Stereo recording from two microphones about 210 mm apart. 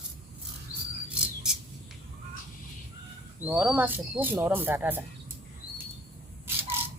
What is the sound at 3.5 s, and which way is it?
Speech, 5° right (ahead or behind).